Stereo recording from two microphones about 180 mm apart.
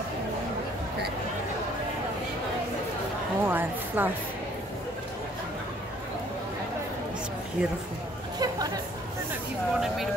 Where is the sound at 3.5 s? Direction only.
10° right (ahead or behind).